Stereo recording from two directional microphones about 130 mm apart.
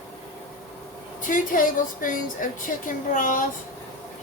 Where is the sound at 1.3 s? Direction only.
90° left.